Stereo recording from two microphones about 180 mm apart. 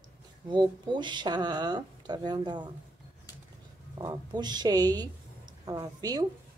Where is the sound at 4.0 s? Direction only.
25° right (ahead or behind).